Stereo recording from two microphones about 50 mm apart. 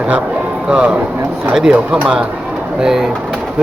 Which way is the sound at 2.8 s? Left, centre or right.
Centre.